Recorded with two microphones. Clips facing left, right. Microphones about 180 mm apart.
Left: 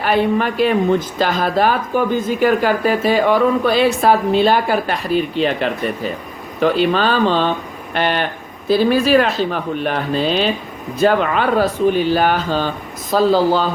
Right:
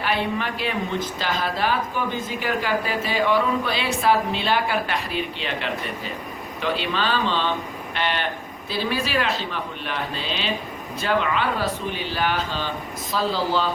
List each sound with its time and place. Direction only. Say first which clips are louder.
0.0 s speech: left 9 dB; 45° left (ahead or behind)